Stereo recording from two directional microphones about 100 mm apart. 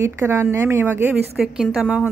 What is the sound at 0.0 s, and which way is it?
A woman's voice, 25° right (ahead or behind).